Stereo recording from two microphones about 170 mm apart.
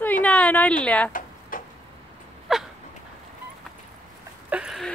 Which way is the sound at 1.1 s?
55° left (ahead or behind).